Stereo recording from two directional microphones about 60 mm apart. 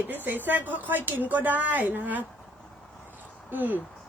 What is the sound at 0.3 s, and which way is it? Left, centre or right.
A woman's voice, right.